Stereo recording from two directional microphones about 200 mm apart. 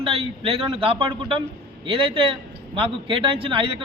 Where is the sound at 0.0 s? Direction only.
30° right (ahead or behind).